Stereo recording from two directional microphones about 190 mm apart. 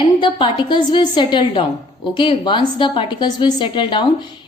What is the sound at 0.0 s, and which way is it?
A woman's voice, 25° left (ahead or behind).